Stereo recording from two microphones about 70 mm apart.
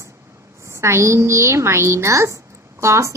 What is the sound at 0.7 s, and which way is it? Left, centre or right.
A woman's voice, right.